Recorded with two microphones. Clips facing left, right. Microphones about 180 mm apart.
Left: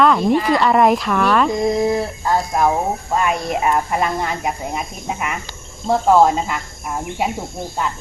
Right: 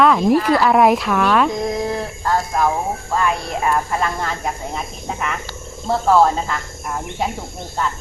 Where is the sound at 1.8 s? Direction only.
10° left (ahead or behind).